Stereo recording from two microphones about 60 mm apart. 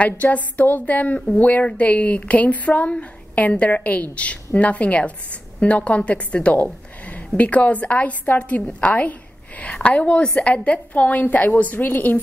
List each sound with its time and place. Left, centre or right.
0.0 s a woman's voice: left
6.6 s a sound: left
7.3 s a woman's voice: left